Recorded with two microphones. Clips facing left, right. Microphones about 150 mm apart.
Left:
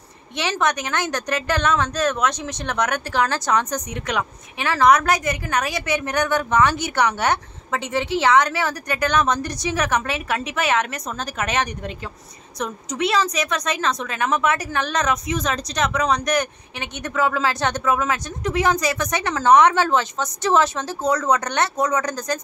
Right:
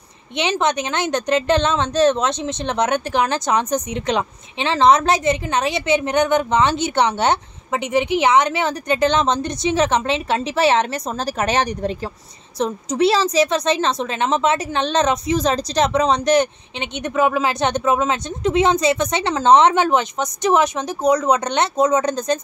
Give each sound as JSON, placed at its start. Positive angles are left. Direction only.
{"t": 0.4, "sound": "a woman's voice", "side_deg": -20}